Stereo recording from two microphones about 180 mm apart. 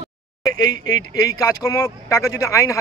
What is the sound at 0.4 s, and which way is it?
Speech, 20° left (ahead or behind).